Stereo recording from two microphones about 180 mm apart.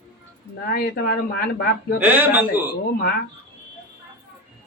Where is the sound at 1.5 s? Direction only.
60° left (ahead or behind).